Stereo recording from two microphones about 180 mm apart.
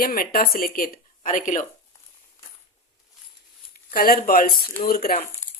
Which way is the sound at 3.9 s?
55° left (ahead or behind).